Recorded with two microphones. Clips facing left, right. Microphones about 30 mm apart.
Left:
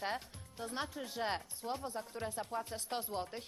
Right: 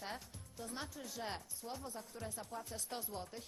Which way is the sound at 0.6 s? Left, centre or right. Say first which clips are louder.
Left 6 dB; left.